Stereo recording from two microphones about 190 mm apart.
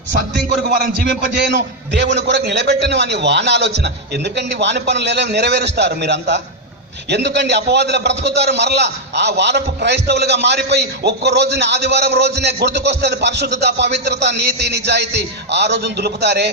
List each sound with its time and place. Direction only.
1.3 s a man's voice: 65° right (ahead or behind)